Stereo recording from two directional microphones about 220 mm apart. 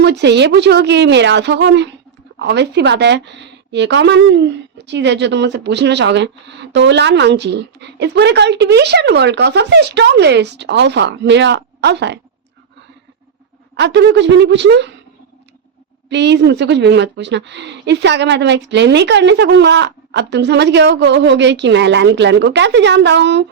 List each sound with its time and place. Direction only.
0.0 s a woman's voice: 50° right (ahead or behind)
13.7 s a woman's voice: 50° right (ahead or behind)
16.0 s a woman's voice: 50° right (ahead or behind)